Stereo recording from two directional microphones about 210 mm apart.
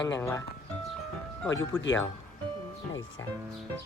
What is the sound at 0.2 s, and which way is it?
Speech, 15° left (ahead or behind).